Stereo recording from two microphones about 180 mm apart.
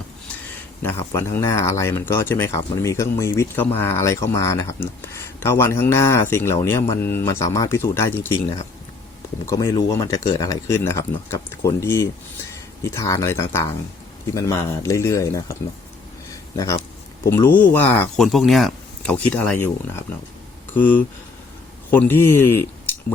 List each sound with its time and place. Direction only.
0.8 s speech: 15° left (ahead or behind)
9.5 s speech: 20° left (ahead or behind)
17.2 s speech: 15° left (ahead or behind)
18.2 s speech: centre (ahead or behind)
20.7 s speech: 10° left (ahead or behind)